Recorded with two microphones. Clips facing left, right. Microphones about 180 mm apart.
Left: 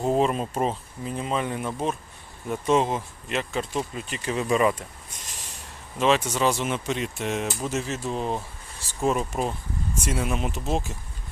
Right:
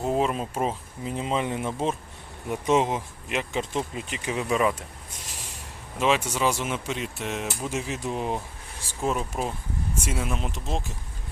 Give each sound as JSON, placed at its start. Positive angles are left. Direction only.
{"t": 0.0, "sound": "speech", "side_deg": 0}
{"t": 1.0, "sound": "speech", "side_deg": -20}
{"t": 6.0, "sound": "speech", "side_deg": -10}
{"t": 7.7, "sound": "speech", "side_deg": -10}